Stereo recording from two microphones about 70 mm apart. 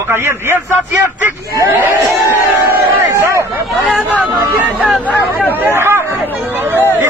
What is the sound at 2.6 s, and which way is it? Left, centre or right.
Crowd, right.